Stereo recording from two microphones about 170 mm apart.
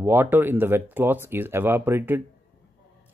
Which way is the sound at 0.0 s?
10° right (ahead or behind).